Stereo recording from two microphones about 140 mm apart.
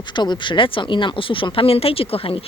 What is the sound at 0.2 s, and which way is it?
Speech, 35° left (ahead or behind).